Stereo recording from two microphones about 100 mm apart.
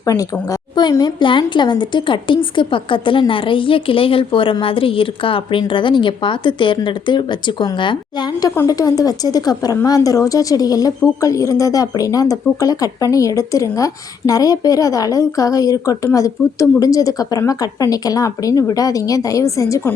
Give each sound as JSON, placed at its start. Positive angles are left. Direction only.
{"t": 0.0, "sound": "a woman's voice", "side_deg": 35}
{"t": 0.8, "sound": "a woman's voice", "side_deg": 45}
{"t": 8.6, "sound": "speech", "side_deg": 40}